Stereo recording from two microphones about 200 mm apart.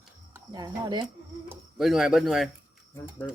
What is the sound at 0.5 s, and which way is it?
Speech, 20° right (ahead or behind).